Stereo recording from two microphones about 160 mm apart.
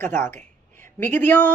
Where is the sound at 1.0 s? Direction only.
10° left (ahead or behind).